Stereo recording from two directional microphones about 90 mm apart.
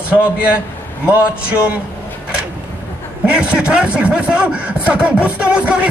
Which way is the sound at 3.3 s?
10° right (ahead or behind).